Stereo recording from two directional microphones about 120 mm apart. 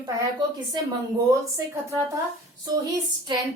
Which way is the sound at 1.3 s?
25° right (ahead or behind).